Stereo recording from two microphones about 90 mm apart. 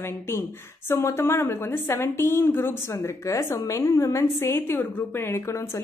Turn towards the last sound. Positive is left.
turn(degrees=30)  # may be behind; listen again after turning